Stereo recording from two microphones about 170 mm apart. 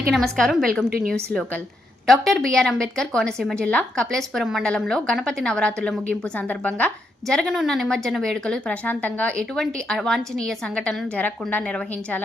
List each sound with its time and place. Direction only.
0.1 s a woman's voice: 5° left (ahead or behind)
0.9 s a woman's voice: 60° right (ahead or behind)
1.1 s a woman's voice: 5° left (ahead or behind)